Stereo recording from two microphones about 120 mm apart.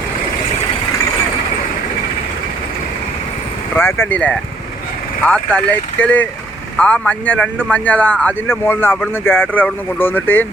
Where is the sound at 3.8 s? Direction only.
15° left (ahead or behind).